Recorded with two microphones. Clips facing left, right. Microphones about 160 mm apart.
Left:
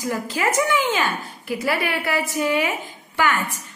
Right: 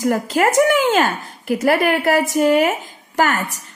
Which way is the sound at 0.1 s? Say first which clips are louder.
Right 4 dB; 45° right (ahead or behind).